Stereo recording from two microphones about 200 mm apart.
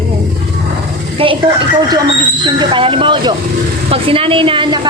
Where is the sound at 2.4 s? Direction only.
25° right (ahead or behind).